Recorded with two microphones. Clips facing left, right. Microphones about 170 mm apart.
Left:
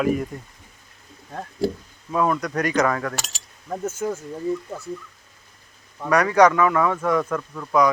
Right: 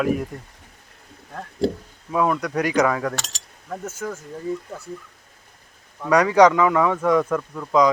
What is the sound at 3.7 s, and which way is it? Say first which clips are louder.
Speech: left 4 dB; 25° left (ahead or behind).